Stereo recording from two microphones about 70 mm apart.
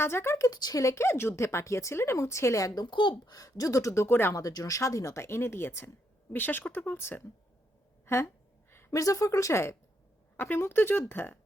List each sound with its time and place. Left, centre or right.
0.0 s speech: left
0.4 s a woman's voice: left
3.0 s a woman's voice: left
4.4 s a woman's voice: left
8.7 s a sound: left
9.0 s a woman's voice: left
10.3 s speech: left